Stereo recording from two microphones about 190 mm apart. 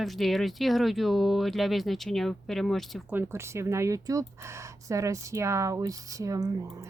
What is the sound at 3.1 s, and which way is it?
Speech, 10° right (ahead or behind).